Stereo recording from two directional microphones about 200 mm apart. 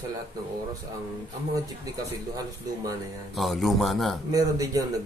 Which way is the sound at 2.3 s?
20° right (ahead or behind).